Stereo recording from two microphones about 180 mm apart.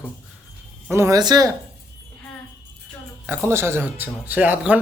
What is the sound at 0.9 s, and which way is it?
Speech, 15° right (ahead or behind).